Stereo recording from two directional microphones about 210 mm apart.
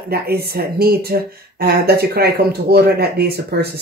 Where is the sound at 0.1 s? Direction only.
50° right (ahead or behind).